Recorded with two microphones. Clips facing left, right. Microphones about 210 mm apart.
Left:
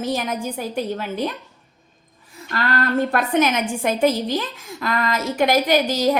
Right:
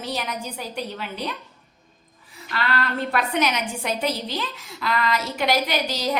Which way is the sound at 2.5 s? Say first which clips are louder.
Left 5 dB; 45° left (ahead or behind).